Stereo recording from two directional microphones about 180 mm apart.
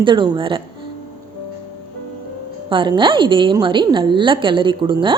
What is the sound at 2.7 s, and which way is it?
A woman's voice, 25° right (ahead or behind).